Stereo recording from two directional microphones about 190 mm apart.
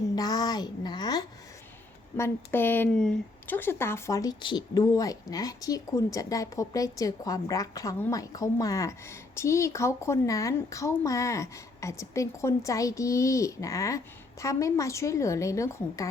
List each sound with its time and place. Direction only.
0.2 s speech: 20° left (ahead or behind)